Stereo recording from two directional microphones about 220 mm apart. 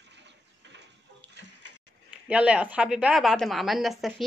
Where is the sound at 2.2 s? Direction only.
5° right (ahead or behind).